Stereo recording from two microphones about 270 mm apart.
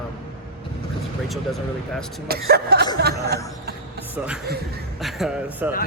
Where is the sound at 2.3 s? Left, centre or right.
Right.